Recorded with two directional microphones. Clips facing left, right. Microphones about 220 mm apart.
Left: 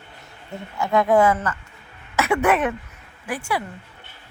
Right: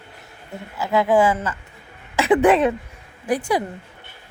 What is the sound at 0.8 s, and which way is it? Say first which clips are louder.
Speech: even; 5° right (ahead or behind).